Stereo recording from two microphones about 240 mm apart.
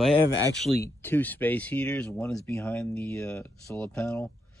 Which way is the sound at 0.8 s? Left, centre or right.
Centre.